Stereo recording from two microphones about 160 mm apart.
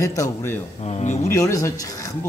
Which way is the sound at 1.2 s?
20° left (ahead or behind).